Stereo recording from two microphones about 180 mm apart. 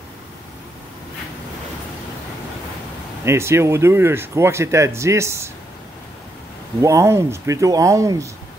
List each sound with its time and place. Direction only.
3.3 s speech: 15° right (ahead or behind)
6.8 s speech: 15° right (ahead or behind)